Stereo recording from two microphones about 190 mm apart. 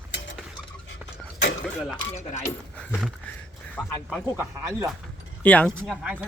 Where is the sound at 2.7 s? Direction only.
5° left (ahead or behind).